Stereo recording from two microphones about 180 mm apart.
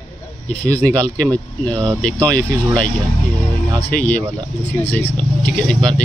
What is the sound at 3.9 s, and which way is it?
Speech, 10° left (ahead or behind).